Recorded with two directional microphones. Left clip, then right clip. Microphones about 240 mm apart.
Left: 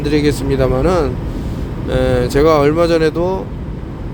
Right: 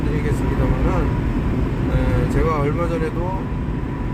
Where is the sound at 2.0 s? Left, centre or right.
Left.